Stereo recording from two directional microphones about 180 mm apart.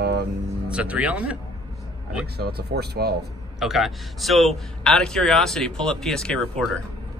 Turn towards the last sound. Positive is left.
turn(degrees=5)  # may be behind; listen again after turning